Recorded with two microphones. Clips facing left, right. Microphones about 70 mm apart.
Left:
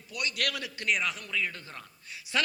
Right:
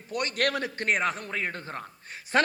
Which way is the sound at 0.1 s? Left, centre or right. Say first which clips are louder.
Right 6 dB; right.